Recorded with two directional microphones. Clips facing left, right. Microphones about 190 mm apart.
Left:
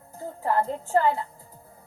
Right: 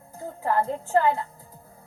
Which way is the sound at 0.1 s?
5° left (ahead or behind).